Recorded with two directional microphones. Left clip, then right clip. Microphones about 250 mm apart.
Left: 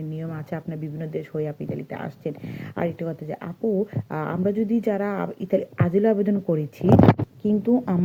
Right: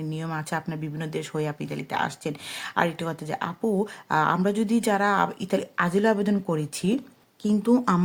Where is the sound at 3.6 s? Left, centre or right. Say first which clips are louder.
Left 3 dB; right.